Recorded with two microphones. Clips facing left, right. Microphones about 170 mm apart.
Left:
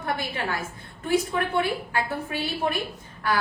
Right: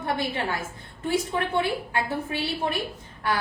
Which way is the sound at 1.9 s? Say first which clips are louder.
Even; 25° right (ahead or behind).